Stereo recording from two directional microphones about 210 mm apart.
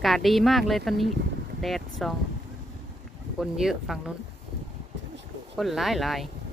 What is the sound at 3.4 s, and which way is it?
Speech, centre (ahead or behind).